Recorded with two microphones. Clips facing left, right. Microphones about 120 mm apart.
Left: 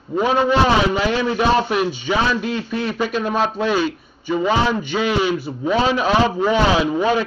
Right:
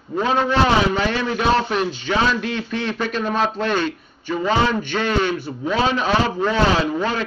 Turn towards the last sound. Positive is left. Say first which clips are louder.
# left 2 dB
turn(degrees=10)  # may be behind; listen again after turning